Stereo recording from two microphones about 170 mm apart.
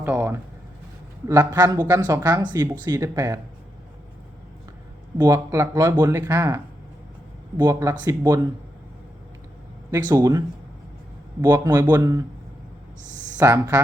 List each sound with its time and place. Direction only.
0.0 s speech: 10° right (ahead or behind)
5.1 s speech: 15° right (ahead or behind)
9.9 s speech: 20° right (ahead or behind)
13.4 s speech: 15° right (ahead or behind)